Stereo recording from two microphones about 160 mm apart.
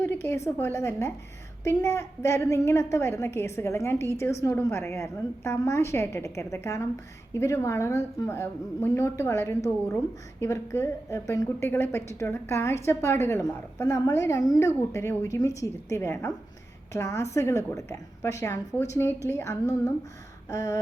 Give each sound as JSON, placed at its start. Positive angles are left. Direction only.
{"t": 0.0, "sound": "a woman's voice", "side_deg": 15}